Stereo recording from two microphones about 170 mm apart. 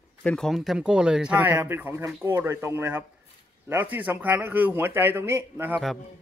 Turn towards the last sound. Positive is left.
turn(degrees=-15)  # may be behind; listen again after turning